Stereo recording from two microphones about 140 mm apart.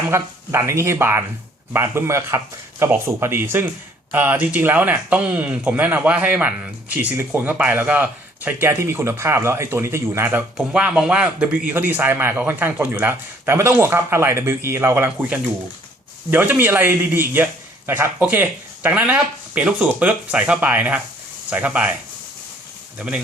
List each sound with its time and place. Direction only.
0.1 s speech: 20° right (ahead or behind)
23.0 s speech: 5° right (ahead or behind)